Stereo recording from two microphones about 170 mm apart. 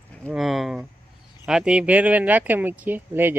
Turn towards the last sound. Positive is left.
turn(degrees=-10)  # may be behind; listen again after turning